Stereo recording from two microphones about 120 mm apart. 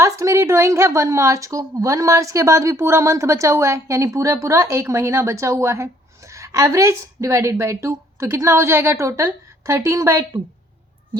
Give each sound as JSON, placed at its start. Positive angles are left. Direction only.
{"t": 0.0, "sound": "a woman's voice", "side_deg": -25}